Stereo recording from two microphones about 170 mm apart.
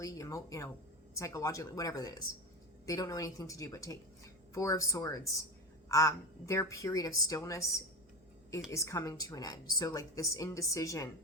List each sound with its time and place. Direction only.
0.0 s a woman's voice: 20° left (ahead or behind)
8.7 s a woman's voice: 15° left (ahead or behind)